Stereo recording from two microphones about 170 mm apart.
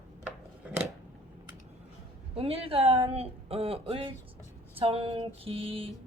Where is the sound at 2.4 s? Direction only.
35° right (ahead or behind).